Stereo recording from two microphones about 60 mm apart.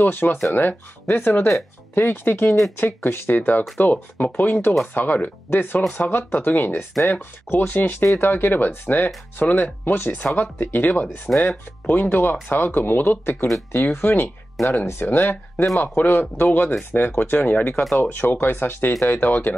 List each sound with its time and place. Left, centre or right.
0.0 s speech: left